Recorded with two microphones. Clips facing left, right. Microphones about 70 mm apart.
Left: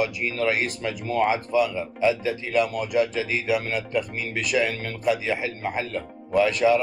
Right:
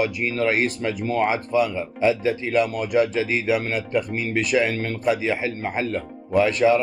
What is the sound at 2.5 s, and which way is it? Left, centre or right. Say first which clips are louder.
Speech: right 1 dB; right.